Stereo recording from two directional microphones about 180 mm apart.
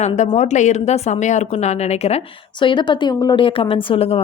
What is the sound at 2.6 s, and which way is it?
A woman's voice, 25° left (ahead or behind).